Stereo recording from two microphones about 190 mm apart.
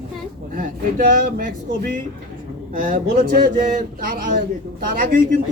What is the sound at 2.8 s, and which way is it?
Speech, 45° right (ahead or behind).